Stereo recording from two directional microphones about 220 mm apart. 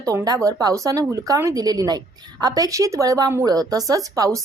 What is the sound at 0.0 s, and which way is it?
Speech, 15° right (ahead or behind).